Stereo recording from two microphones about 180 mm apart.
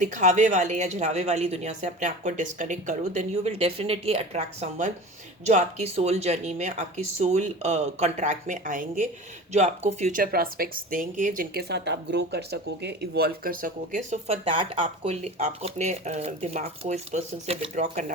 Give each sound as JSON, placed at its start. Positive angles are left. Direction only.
{"t": 0.0, "sound": "speech", "side_deg": -45}
{"t": 11.7, "sound": "speech", "side_deg": -70}
{"t": 14.3, "sound": "speech", "side_deg": -30}